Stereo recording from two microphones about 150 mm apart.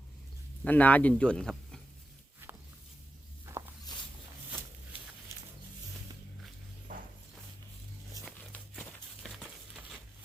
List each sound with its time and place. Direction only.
0.6 s speech: 10° left (ahead or behind)
2.4 s walk: 15° right (ahead or behind)
6.9 s a sound: 60° right (ahead or behind)